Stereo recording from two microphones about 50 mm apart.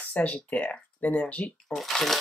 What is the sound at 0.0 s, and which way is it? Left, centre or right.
Speech, left.